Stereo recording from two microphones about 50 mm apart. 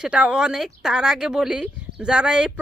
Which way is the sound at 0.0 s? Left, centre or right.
Centre.